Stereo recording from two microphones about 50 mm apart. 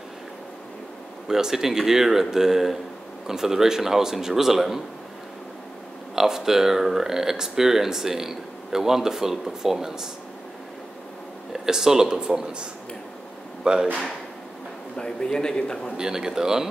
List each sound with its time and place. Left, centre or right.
1.2 s speech: centre
6.1 s speech: centre
11.5 s speech: centre
13.7 s speech: centre
15.0 s a man's voice: centre
16.0 s speech: centre